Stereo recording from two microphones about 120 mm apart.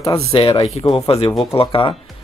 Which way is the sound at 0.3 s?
50° left (ahead or behind).